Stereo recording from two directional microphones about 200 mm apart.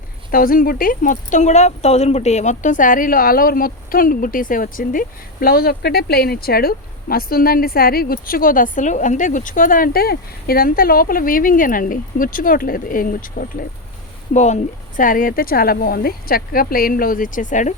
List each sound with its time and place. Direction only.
0.3 s speech: 45° left (ahead or behind)